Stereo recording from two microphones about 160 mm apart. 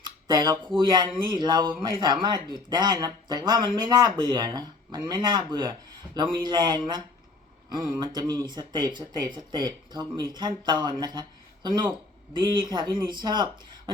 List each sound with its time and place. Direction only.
0.0 s speech: 25° right (ahead or behind)